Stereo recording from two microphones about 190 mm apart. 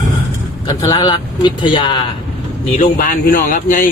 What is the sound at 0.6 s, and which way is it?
Speech, 25° left (ahead or behind).